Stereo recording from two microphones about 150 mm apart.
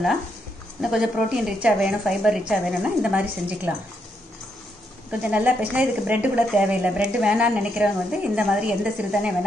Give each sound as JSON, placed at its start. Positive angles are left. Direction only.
{"t": 0.7, "sound": "a woman's voice", "side_deg": -5}
{"t": 5.2, "sound": "a woman's voice", "side_deg": -10}